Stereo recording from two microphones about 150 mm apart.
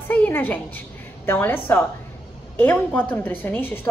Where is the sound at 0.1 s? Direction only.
15° left (ahead or behind).